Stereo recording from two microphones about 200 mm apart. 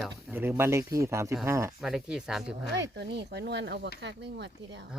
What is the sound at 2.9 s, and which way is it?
Speech, 55° right (ahead or behind).